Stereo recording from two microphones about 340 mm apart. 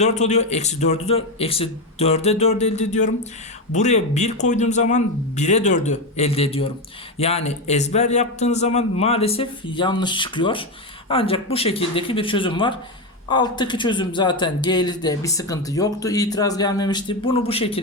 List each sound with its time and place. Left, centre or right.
0.0 s a man's voice: centre